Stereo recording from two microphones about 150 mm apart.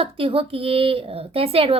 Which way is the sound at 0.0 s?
35° right (ahead or behind).